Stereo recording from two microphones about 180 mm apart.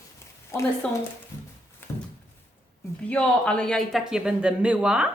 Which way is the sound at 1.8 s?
10° left (ahead or behind).